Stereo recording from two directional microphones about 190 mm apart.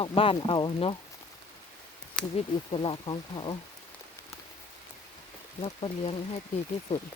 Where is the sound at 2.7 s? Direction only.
25° left (ahead or behind).